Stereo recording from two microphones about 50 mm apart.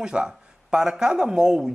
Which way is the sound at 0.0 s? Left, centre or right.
Centre.